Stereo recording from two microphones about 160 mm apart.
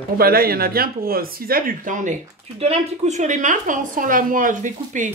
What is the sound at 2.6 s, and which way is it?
A woman's voice, 45° right (ahead or behind).